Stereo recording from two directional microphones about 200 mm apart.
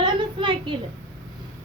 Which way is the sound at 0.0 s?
25° right (ahead or behind).